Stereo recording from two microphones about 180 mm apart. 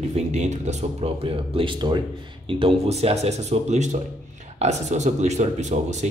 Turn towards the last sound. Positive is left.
turn(degrees=-40)  # may be behind; listen again after turning